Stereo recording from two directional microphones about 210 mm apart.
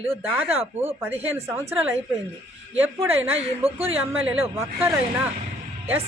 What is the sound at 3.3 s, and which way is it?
Speech, 30° right (ahead or behind).